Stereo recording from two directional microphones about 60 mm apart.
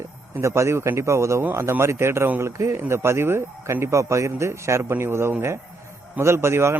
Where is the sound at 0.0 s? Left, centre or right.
Right.